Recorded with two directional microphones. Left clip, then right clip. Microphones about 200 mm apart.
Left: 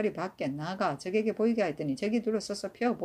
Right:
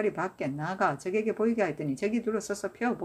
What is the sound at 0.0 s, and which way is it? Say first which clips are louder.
Speech: right 2 dB; centre (ahead or behind).